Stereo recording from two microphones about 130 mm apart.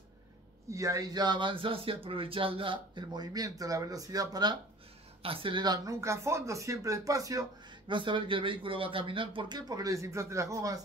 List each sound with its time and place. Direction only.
0.7 s speech: 25° right (ahead or behind)
5.2 s speech: 45° right (ahead or behind); by 7.4 s 25° right (ahead or behind)
7.9 s speech: 40° right (ahead or behind)